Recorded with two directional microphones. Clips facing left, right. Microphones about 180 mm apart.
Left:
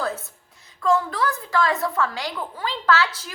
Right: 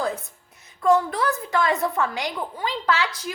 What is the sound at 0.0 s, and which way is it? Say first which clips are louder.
A woman's voice: right 1 dB; 15° right (ahead or behind).